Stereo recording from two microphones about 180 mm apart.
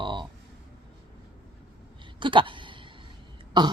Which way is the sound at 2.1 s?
25° right (ahead or behind).